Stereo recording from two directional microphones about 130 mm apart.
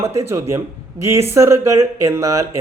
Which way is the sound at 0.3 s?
20° right (ahead or behind).